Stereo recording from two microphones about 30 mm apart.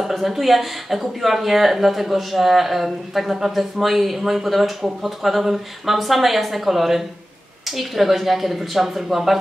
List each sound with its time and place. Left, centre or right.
0.0 s speech: centre